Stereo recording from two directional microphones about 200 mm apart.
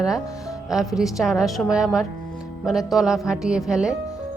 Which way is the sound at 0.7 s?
Centre (ahead or behind).